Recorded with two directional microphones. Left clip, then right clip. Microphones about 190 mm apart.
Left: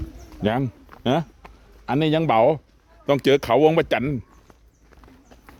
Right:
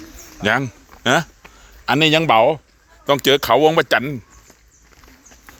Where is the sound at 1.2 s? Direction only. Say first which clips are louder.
Right 7 dB; centre (ahead or behind).